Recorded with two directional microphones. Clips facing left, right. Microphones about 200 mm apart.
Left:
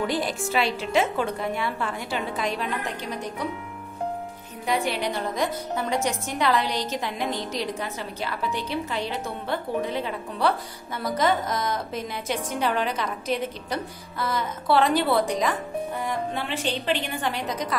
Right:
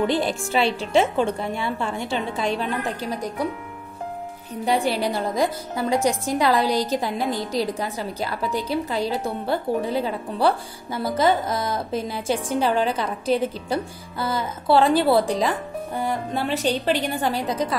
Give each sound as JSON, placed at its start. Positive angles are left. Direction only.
{"t": 0.0, "sound": "a woman's voice", "side_deg": -25}
{"t": 4.6, "sound": "a woman's voice", "side_deg": -35}